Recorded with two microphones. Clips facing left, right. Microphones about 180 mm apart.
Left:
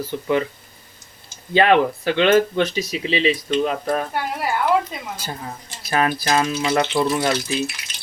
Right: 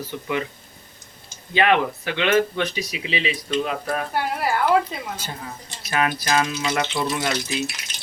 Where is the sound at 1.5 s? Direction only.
35° left (ahead or behind).